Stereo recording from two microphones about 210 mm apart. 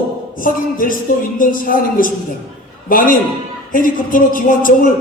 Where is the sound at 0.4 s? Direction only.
40° left (ahead or behind).